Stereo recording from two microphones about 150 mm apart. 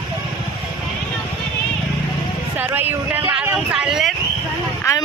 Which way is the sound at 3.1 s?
10° right (ahead or behind).